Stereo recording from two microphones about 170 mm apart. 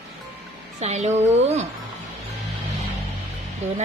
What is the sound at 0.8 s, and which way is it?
Speech, 40° right (ahead or behind).